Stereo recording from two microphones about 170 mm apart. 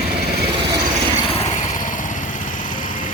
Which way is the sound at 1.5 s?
45° left (ahead or behind).